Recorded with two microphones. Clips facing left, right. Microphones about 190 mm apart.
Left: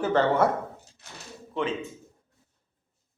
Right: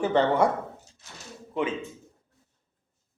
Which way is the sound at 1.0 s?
65° left (ahead or behind).